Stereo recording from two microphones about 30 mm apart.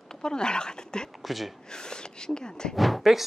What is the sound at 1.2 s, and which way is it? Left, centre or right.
Speech, centre.